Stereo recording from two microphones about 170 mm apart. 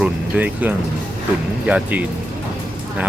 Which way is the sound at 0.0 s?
10° right (ahead or behind).